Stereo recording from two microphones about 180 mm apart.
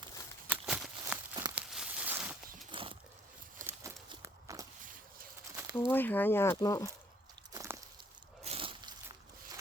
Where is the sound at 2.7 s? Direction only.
30° right (ahead or behind).